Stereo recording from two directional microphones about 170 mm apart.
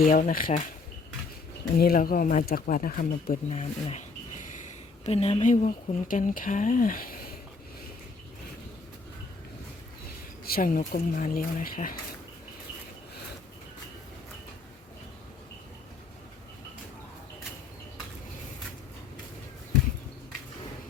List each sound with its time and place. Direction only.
0.0 s speech: 55° left (ahead or behind)
1.7 s speech: 55° left (ahead or behind)
3.5 s speech: 40° left (ahead or behind)
5.0 s speech: 35° left (ahead or behind); by 7.3 s 60° left (ahead or behind)
10.4 s speech: 60° left (ahead or behind)